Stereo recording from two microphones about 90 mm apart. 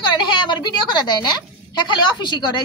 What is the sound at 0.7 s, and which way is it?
A woman's voice, 55° left (ahead or behind).